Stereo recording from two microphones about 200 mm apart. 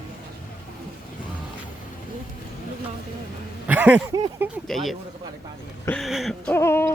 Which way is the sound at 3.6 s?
10° right (ahead or behind).